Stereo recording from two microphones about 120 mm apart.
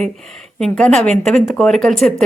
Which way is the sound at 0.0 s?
5° left (ahead or behind).